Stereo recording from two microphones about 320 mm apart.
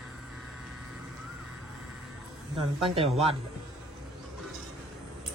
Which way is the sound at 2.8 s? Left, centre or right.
Centre.